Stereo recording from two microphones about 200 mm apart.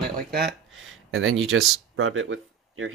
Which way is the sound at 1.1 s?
85° right.